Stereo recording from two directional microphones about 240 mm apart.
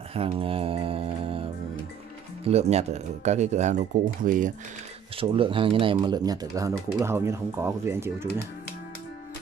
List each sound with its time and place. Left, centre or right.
0.1 s speech: right
5.1 s speech: right